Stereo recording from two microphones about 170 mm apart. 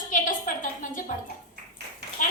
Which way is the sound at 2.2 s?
50° left (ahead or behind).